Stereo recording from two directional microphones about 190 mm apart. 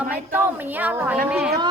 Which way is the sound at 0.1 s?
10° right (ahead or behind).